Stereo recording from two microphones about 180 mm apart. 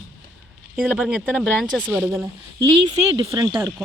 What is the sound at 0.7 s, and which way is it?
Speech, 5° right (ahead or behind).